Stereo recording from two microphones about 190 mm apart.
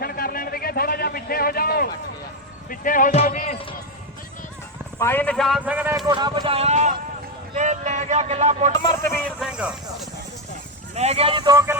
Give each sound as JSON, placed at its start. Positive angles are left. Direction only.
{"t": 0.0, "sound": "a sound", "side_deg": 50}
{"t": 2.6, "sound": "speech", "side_deg": 45}
{"t": 4.9, "sound": "a man's voice", "side_deg": 10}
{"t": 6.1, "sound": "speech", "side_deg": -25}
{"t": 9.0, "sound": "speech", "side_deg": 10}
{"t": 9.4, "sound": "speech", "side_deg": -5}
{"t": 10.9, "sound": "speech", "side_deg": -35}